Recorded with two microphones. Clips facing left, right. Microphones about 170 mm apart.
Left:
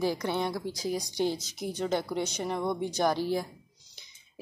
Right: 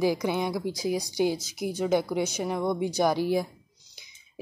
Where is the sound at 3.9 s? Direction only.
10° right (ahead or behind).